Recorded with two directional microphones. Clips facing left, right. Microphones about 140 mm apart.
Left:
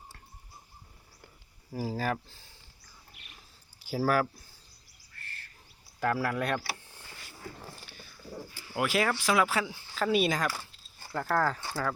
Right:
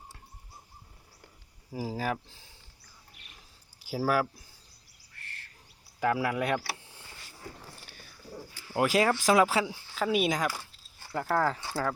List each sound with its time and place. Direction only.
1.7 s speech: 5° right (ahead or behind)
3.8 s speech: 10° right (ahead or behind)
6.0 s speech: 10° right (ahead or behind)
8.7 s speech: 30° right (ahead or behind)
9.6 s speech: 10° right (ahead or behind)